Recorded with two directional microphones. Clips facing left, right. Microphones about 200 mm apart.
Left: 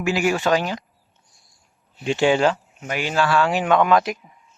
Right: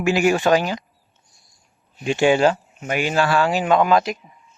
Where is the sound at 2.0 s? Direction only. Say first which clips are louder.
Right 2 dB; 15° right (ahead or behind).